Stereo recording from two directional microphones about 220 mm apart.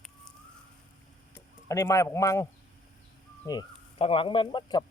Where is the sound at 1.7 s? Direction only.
15° left (ahead or behind).